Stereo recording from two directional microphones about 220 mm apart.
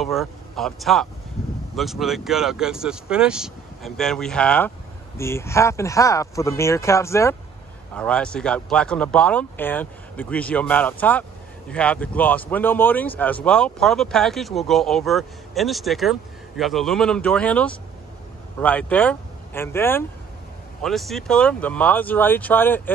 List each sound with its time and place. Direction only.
0.0 s speech: centre (ahead or behind)